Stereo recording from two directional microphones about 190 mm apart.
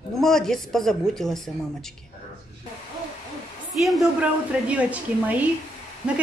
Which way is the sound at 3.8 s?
5° right (ahead or behind).